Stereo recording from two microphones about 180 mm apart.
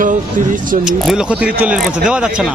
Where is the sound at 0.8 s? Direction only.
5° right (ahead or behind).